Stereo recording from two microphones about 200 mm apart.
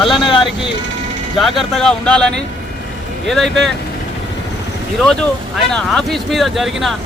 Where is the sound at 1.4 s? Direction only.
Centre (ahead or behind).